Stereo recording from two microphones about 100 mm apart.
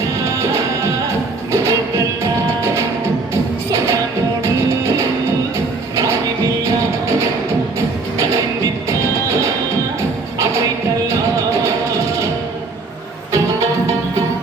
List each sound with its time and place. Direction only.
0.3 s music: 30° right (ahead or behind)
4.4 s music: 25° right (ahead or behind)
8.9 s music: 30° right (ahead or behind)
11.6 s music: 30° right (ahead or behind)
13.3 s music: 30° right (ahead or behind)